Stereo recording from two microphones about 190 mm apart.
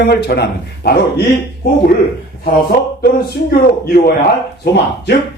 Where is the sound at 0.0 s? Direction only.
55° left (ahead or behind).